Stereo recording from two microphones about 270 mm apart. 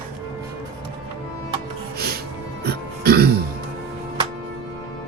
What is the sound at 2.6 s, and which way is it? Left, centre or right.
Throat clearing, right.